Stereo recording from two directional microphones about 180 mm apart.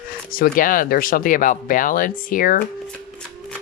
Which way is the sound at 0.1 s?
55° left (ahead or behind).